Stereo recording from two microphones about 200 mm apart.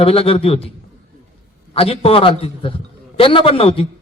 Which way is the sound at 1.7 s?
30° left (ahead or behind).